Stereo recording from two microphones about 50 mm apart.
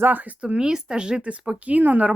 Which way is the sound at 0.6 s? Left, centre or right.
Centre.